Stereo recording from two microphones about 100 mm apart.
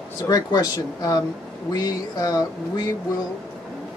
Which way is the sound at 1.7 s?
40° left (ahead or behind).